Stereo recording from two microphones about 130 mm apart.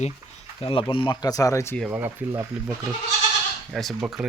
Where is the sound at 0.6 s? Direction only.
45° left (ahead or behind); by 1.7 s 25° left (ahead or behind).